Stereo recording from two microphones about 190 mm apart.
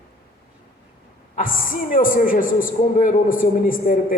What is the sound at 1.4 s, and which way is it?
A man's voice, 45° left (ahead or behind).